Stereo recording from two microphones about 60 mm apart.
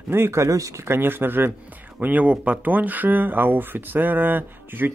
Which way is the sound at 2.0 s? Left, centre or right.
Right.